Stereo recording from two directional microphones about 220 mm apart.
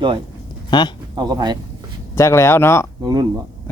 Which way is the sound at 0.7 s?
20° left (ahead or behind).